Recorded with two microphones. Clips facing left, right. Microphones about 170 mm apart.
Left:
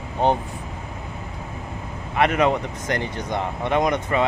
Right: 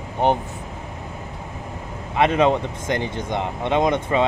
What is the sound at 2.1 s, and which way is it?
Speech, 20° right (ahead or behind).